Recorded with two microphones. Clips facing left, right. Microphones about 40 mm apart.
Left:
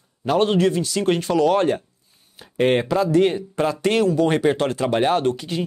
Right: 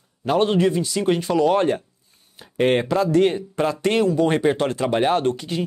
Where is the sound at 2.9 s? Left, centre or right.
Left.